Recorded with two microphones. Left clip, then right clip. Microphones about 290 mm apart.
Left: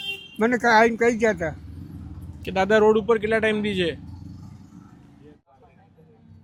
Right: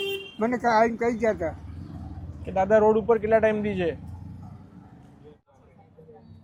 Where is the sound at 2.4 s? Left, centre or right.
Left.